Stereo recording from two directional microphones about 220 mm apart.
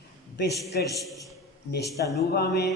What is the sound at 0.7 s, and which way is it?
Speech, 45° left (ahead or behind).